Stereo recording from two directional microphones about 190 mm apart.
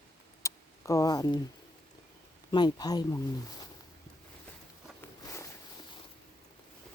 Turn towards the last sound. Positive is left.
turn(degrees=15)  # may be behind; listen again after turning